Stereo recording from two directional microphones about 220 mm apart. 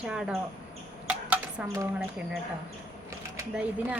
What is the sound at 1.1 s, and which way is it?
Dishes, 5° right (ahead or behind).